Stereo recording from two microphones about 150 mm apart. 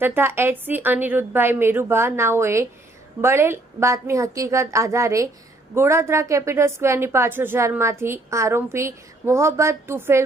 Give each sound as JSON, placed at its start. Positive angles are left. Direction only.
{"t": 0.0, "sound": "a woman's voice", "side_deg": -15}